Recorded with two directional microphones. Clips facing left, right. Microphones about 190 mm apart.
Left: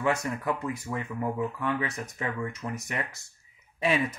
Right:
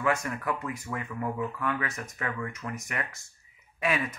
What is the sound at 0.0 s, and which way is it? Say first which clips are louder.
Speech: left 1 dB; 25° left (ahead or behind).